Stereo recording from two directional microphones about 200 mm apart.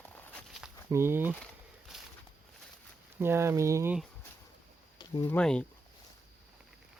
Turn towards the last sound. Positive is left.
turn(degrees=5)  # may be behind; listen again after turning